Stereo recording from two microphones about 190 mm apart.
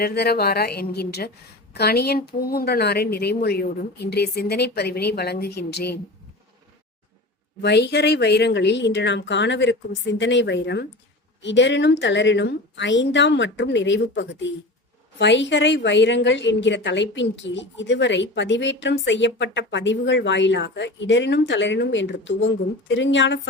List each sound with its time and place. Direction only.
0.0 s speech: 55° left (ahead or behind)
7.6 s a woman's voice: 65° left (ahead or behind)